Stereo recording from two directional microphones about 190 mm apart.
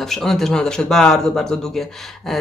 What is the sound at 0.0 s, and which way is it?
Speech, centre (ahead or behind).